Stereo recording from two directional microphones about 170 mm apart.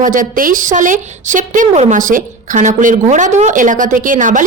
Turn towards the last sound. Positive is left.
turn(degrees=-50)  # may be behind; listen again after turning